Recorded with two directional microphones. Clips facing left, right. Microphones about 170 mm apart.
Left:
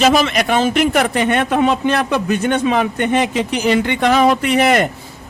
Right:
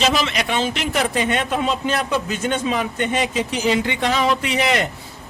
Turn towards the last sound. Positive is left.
turn(degrees=50)  # may be behind; listen again after turning